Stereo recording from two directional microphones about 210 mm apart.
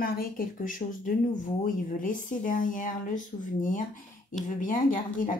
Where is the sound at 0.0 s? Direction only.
45° left (ahead or behind).